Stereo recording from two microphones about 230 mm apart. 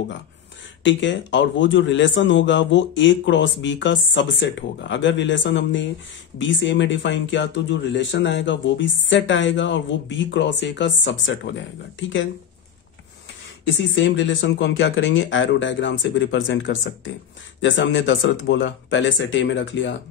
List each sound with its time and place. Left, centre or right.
0.8 s speech: left
13.7 s speech: left